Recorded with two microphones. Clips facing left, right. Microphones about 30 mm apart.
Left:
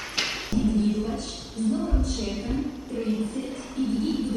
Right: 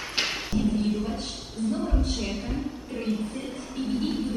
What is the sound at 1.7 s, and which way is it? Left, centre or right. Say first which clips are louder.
Speech: left 1 dB; centre.